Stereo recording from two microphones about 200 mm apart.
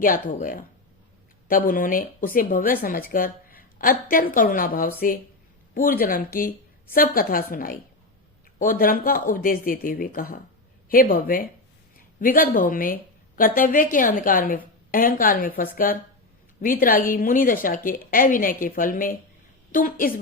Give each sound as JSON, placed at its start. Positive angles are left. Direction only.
{"t": 0.0, "sound": "a woman's voice", "side_deg": 40}